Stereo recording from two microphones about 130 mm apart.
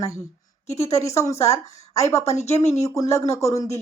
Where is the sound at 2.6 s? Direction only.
20° left (ahead or behind).